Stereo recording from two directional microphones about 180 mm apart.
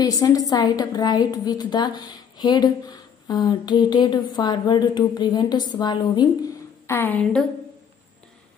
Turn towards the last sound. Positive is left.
turn(degrees=10)  # may be behind; listen again after turning